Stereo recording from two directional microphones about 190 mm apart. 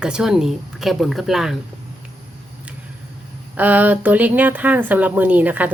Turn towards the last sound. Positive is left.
turn(degrees=-10)  # may be behind; listen again after turning